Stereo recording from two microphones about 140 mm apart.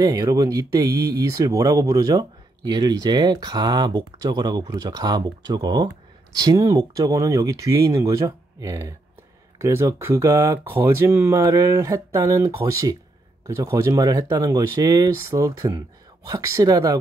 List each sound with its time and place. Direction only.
0.0 s speech: 25° right (ahead or behind)